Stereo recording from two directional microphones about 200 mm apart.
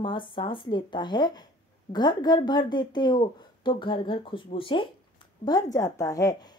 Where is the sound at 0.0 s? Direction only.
25° left (ahead or behind).